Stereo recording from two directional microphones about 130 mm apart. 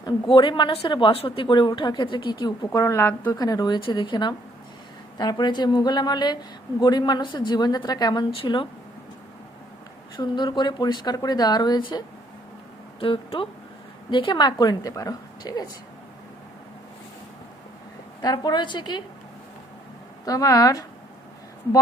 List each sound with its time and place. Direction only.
0.0 s a woman's voice: 35° left (ahead or behind); by 3.3 s 20° left (ahead or behind)
3.3 s a woman's voice: 30° left (ahead or behind)
10.2 s a woman's voice: 35° left (ahead or behind)
13.0 s a woman's voice: 45° left (ahead or behind)
18.2 s a woman's voice: 30° left (ahead or behind)
20.2 s a woman's voice: 25° left (ahead or behind)